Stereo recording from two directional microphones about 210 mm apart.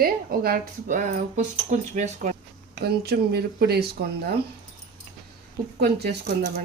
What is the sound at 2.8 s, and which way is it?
Speech, 50° right (ahead or behind).